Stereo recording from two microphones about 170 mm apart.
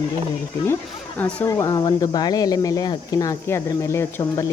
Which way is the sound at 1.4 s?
20° left (ahead or behind).